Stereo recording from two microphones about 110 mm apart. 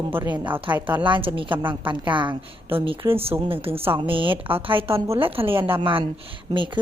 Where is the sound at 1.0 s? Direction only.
50° right (ahead or behind).